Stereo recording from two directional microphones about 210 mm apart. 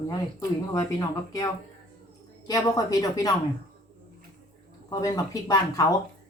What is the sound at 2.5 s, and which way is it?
Speech, 15° left (ahead or behind).